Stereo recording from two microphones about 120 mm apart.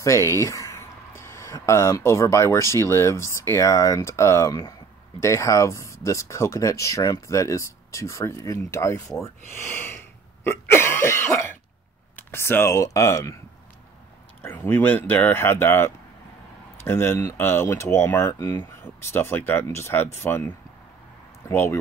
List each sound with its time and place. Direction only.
0.0 s speech: 25° left (ahead or behind)
9.2 s wheeze: 20° left (ahead or behind)
12.2 s speech: 20° left (ahead or behind)
14.4 s speech: 20° left (ahead or behind)